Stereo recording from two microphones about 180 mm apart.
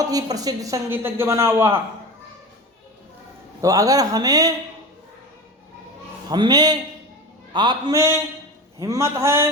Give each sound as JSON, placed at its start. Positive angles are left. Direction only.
{"t": 0.0, "sound": "speech", "side_deg": -20}
{"t": 3.6, "sound": "speech", "side_deg": -20}
{"t": 6.2, "sound": "speech", "side_deg": -25}